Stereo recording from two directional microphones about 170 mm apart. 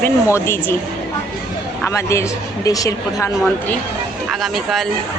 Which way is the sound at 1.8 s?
15° left (ahead or behind).